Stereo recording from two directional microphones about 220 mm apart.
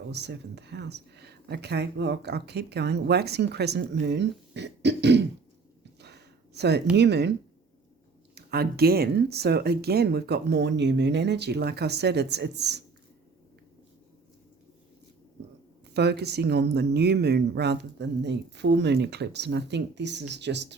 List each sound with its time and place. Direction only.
0.1 s speech: 50° right (ahead or behind)
6.0 s a sound: 50° right (ahead or behind)
6.9 s speech: 50° right (ahead or behind)
8.4 s speech: 45° right (ahead or behind)
15.9 s speech: 50° right (ahead or behind)